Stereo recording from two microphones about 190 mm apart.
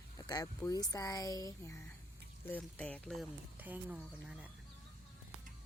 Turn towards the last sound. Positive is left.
turn(degrees=-5)  # may be behind; listen again after turning